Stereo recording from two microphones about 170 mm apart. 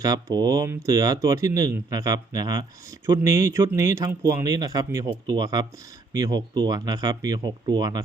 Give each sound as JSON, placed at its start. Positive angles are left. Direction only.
{"t": 0.0, "sound": "speech", "side_deg": -20}